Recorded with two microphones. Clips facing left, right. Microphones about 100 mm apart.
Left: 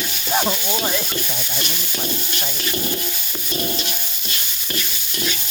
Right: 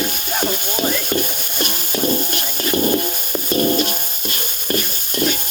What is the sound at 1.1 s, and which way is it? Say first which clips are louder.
Stir: right 5 dB; 50° right (ahead or behind).